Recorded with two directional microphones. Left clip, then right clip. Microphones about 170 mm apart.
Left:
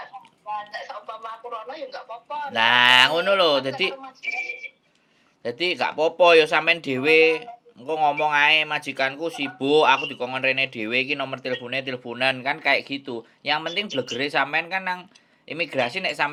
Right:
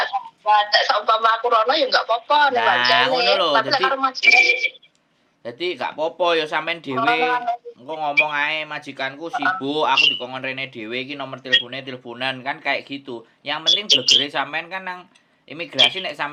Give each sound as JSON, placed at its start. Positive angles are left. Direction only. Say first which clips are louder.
{"t": 0.0, "sound": "speech", "louder": "right 16 dB", "side_deg": -30}
{"t": 2.6, "sound": "speech", "louder": "left 1 dB", "side_deg": 65}
{"t": 3.9, "sound": "speech", "louder": "right 16 dB", "side_deg": -35}
{"t": 5.4, "sound": "speech", "louder": "left 2 dB", "side_deg": 60}
{"t": 13.8, "sound": "speech", "louder": "right 13 dB", "side_deg": -30}
{"t": 14.2, "sound": "speech", "louder": "even", "side_deg": 50}